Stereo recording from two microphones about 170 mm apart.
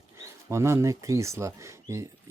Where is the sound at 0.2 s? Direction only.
15° right (ahead or behind).